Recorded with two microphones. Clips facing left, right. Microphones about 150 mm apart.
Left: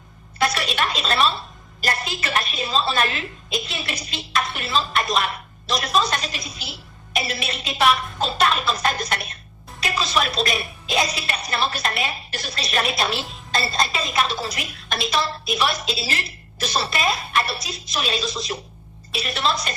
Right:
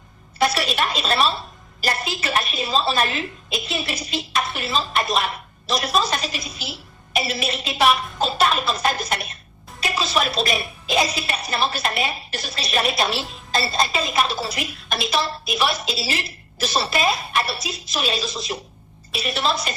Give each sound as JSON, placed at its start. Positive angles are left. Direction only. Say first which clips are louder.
{"t": 0.5, "sound": "a woman's voice", "louder": "right 1 dB", "side_deg": 0}